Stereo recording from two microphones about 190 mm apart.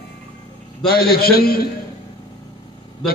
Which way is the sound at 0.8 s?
50° left (ahead or behind).